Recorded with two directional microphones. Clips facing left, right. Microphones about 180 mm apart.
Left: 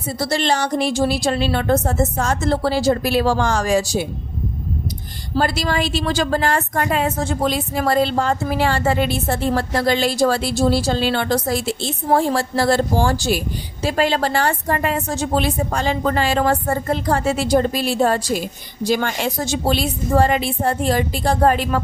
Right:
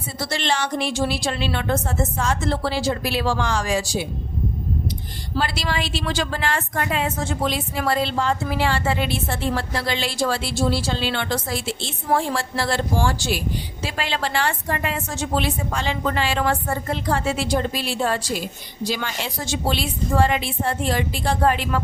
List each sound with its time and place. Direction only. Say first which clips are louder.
0.2 s a woman's voice: left 4 dB; 40° left (ahead or behind)
5.4 s a woman's voice: left 5 dB; 45° left (ahead or behind)